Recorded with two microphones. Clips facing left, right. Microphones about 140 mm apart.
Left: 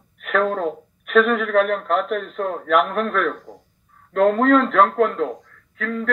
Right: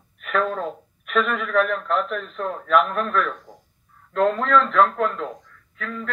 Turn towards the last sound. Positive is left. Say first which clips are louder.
# left 6 dB
turn(degrees=45)  # may be behind; listen again after turning